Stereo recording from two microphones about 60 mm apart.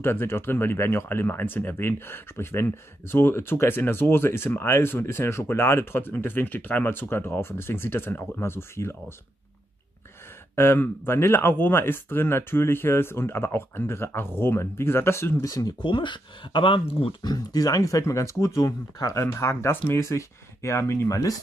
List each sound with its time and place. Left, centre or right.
0.0 s speech: left
10.5 s speech: left
15.4 s speech: left
17.5 s speech: left
19.4 s speech: left
21.1 s speech: left